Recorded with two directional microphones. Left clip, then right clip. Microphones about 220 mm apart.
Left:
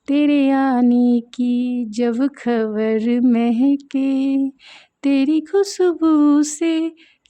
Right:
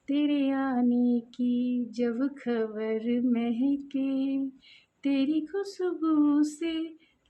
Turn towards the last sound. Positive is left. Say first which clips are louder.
# left 10 dB
turn(degrees=50)  # may be behind; listen again after turning